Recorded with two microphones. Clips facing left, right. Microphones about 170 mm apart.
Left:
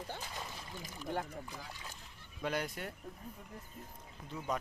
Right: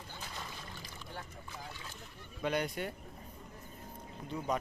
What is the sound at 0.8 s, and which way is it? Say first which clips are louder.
Boat: left 8 dB; 45° left (ahead or behind).